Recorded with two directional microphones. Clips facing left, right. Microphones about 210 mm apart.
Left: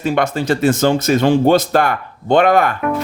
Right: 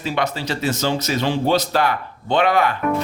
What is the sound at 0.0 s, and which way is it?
Speech, 50° left (ahead or behind).